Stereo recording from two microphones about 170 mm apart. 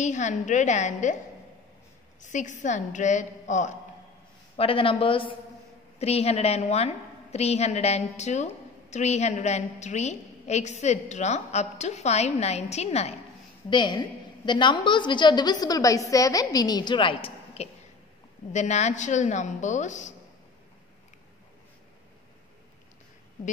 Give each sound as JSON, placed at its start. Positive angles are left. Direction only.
{"t": 0.0, "sound": "a woman's voice", "side_deg": 45}
{"t": 2.2, "sound": "a woman's voice", "side_deg": 45}
{"t": 4.6, "sound": "a woman's voice", "side_deg": 30}
{"t": 13.7, "sound": "a woman's voice", "side_deg": 25}
{"t": 18.5, "sound": "a woman's voice", "side_deg": 40}